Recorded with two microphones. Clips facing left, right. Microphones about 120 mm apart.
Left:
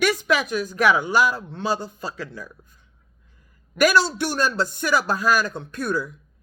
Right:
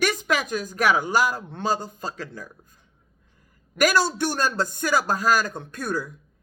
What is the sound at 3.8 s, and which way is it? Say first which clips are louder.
A man's voice: left 2 dB; 45° right (ahead or behind).